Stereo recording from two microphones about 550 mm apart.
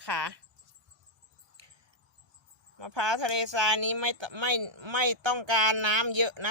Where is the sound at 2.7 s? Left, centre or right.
Right.